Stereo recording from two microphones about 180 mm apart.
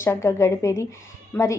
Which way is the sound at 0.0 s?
15° left (ahead or behind).